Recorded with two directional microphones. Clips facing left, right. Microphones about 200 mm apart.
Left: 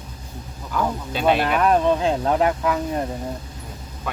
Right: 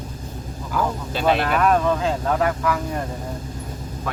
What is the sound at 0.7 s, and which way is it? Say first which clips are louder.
Speech: even; centre (ahead or behind).